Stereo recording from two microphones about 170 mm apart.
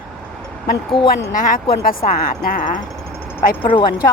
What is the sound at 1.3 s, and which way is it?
Speech, 50° left (ahead or behind).